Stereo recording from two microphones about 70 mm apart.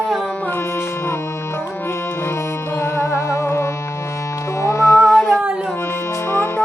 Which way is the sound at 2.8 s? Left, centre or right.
Left.